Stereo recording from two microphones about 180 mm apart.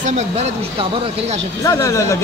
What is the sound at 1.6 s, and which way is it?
Speech, 15° left (ahead or behind).